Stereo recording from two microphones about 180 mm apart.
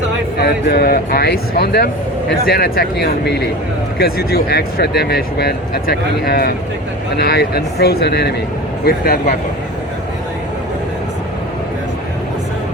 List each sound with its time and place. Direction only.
0.3 s speech: 60° left (ahead or behind)